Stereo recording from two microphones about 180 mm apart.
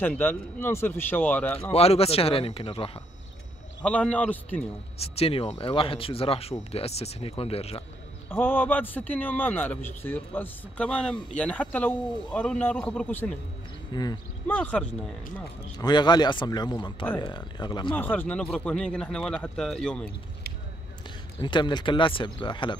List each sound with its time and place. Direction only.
0.0 s a man's voice: 10° left (ahead or behind)
1.7 s speech: 35° left (ahead or behind)
3.8 s a man's voice: 5° left (ahead or behind)
4.9 s speech: 35° left (ahead or behind)
8.3 s a man's voice: 10° left (ahead or behind)
13.9 s speech: 20° left (ahead or behind)
14.5 s a man's voice: 10° left (ahead or behind)
15.8 s speech: 25° left (ahead or behind)
17.9 s speech: 10° left (ahead or behind)
21.4 s speech: 25° left (ahead or behind)